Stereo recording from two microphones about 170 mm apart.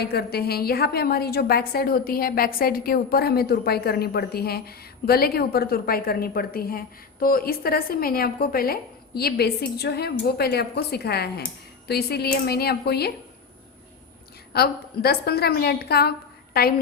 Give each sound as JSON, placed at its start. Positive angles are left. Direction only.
{"t": 0.0, "sound": "a woman's voice", "side_deg": 70}
{"t": 14.5, "sound": "a woman's voice", "side_deg": 65}